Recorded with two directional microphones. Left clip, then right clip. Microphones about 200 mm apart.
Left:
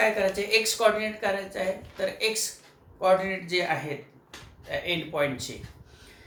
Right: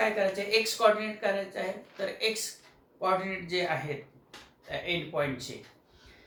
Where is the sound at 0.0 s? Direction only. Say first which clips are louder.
Left 4 dB; 30° left (ahead or behind).